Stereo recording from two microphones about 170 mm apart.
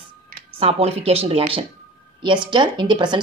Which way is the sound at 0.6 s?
35° right (ahead or behind).